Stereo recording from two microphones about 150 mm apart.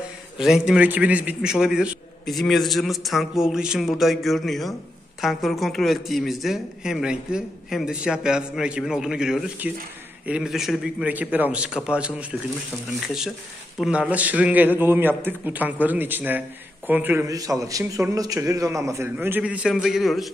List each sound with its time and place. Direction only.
0.4 s a man's voice: 5° right (ahead or behind)
17.3 s a man's voice: 25° right (ahead or behind); by 20.2 s centre (ahead or behind)